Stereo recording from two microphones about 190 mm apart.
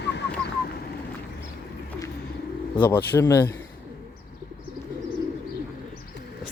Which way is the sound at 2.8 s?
10° left (ahead or behind).